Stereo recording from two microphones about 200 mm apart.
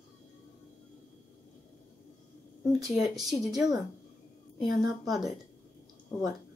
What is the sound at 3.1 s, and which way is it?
Speech, centre (ahead or behind).